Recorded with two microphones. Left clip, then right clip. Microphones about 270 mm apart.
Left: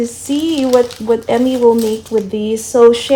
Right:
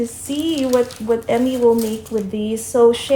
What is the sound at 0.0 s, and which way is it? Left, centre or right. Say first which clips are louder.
A woman's voice: left 5 dB; left.